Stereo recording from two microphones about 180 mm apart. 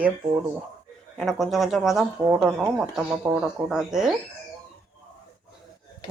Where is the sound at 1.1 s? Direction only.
Centre (ahead or behind).